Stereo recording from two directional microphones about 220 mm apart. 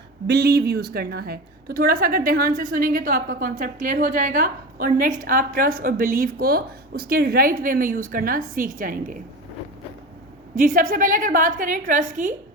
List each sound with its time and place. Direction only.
0.3 s a woman's voice: 50° right (ahead or behind)
10.5 s a woman's voice: 40° right (ahead or behind)